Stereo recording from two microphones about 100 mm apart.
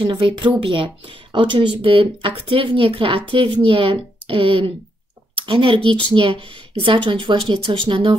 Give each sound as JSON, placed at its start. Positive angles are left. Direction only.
{"t": 0.0, "sound": "a woman's voice", "side_deg": -55}